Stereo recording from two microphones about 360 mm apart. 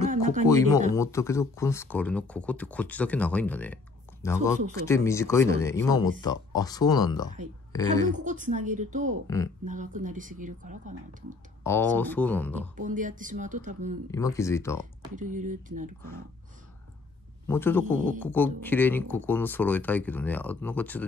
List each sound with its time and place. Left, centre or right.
0.1 s a sound: right
0.5 s speech: centre
8.1 s speech: right
11.6 s speech: centre
12.7 s speech: right
14.1 s speech: centre
15.0 s speech: right
17.5 s speech: centre